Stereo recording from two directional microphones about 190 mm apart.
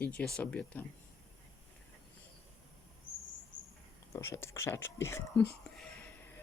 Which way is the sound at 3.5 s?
25° left (ahead or behind).